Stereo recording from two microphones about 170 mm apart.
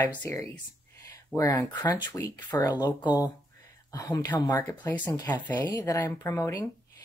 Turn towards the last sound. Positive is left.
turn(degrees=15)  # may be behind; listen again after turning